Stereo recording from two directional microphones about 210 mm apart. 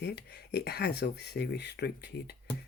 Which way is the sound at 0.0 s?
50° left (ahead or behind).